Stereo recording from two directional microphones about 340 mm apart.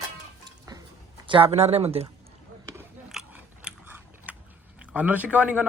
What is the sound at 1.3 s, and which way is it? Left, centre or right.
Speech, centre.